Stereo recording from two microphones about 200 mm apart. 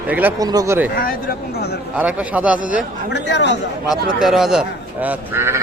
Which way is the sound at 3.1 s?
60° left (ahead or behind).